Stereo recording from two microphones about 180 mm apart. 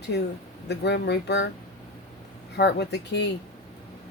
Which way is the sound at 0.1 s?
70° left (ahead or behind).